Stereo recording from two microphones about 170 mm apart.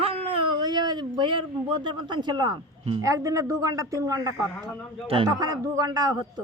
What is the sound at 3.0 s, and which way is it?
Speech, 20° right (ahead or behind).